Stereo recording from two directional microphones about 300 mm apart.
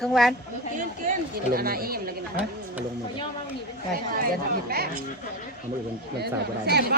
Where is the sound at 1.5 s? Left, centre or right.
Right.